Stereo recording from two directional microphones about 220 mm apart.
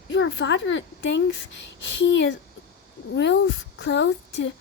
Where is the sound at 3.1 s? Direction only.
50° left (ahead or behind).